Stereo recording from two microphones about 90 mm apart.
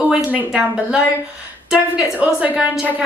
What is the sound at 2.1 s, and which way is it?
Speech, 15° right (ahead or behind).